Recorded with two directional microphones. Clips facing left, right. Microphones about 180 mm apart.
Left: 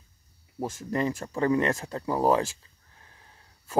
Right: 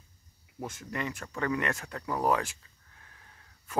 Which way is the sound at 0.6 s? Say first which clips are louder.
Left 7 dB; 35° left (ahead or behind).